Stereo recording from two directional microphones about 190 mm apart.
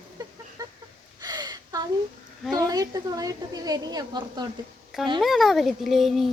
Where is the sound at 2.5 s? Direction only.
20° right (ahead or behind).